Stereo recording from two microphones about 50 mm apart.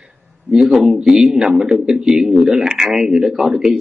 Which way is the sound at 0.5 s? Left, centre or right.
Centre.